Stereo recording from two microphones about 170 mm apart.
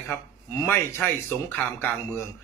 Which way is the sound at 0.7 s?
10° left (ahead or behind).